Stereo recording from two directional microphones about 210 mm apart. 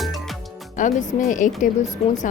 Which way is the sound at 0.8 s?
35° left (ahead or behind).